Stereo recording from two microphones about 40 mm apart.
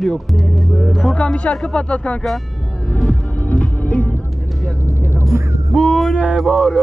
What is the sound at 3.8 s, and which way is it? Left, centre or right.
Music, left.